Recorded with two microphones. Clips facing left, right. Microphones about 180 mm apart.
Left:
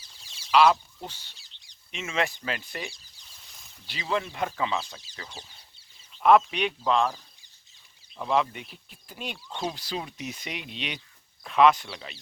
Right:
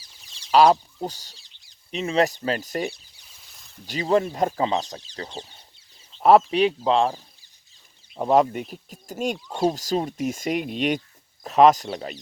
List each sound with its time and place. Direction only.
0.5 s speech: 40° right (ahead or behind)
3.4 s a sound: centre (ahead or behind)
3.8 s speech: 40° right (ahead or behind)
6.1 s a sound: 35° right (ahead or behind)
6.5 s speech: 35° right (ahead or behind)
8.1 s speech: 45° right (ahead or behind)